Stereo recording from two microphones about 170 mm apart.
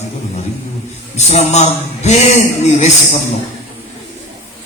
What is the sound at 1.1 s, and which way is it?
Speech, 40° left (ahead or behind).